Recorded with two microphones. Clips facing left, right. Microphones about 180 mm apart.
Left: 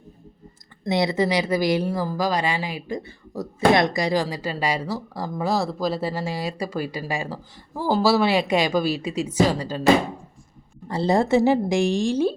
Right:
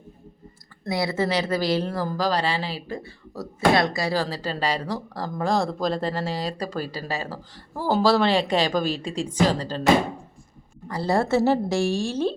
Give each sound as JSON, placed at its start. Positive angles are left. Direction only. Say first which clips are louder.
{"t": 0.9, "sound": "speech", "louder": "left 3 dB", "side_deg": 20}
{"t": 10.8, "sound": "speech", "louder": "left 3 dB", "side_deg": 25}